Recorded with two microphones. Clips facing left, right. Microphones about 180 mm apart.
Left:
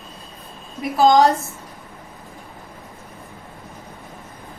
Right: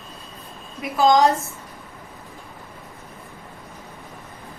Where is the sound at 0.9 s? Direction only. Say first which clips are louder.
Left 2 dB; 35° left (ahead or behind).